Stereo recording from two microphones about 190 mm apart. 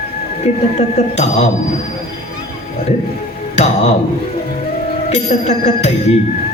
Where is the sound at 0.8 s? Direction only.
35° left (ahead or behind).